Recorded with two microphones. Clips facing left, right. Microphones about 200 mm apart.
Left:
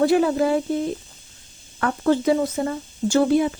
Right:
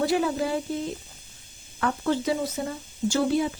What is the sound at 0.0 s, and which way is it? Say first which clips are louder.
Speech: left 6 dB; 55° left (ahead or behind).